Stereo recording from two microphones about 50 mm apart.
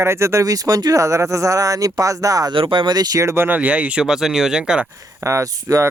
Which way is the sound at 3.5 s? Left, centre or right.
Right.